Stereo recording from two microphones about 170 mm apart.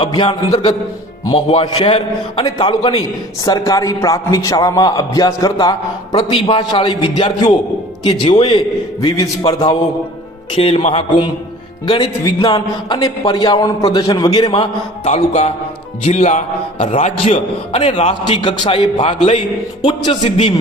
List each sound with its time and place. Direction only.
0.0 s a man's voice: 30° left (ahead or behind)
15.1 s a man's voice: 40° left (ahead or behind)